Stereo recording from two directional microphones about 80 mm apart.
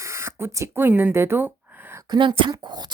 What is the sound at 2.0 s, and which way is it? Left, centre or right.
Speech, right.